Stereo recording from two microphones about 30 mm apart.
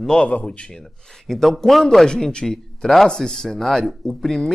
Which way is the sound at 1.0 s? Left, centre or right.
Centre.